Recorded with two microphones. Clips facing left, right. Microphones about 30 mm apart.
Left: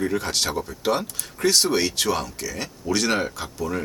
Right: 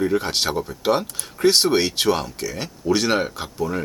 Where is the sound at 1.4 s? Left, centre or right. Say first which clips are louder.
Right 3 dB; right.